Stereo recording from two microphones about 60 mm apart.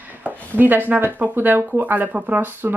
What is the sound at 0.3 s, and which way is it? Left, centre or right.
Speech, right.